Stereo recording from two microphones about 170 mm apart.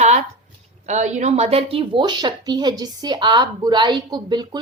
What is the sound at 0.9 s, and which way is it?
A woman's voice, 45° right (ahead or behind).